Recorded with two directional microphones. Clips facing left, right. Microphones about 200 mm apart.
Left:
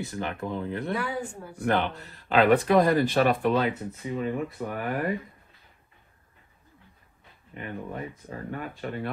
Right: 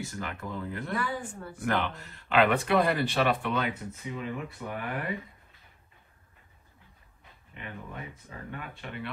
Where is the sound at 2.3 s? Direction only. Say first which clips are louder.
Left 4 dB; 40° left (ahead or behind).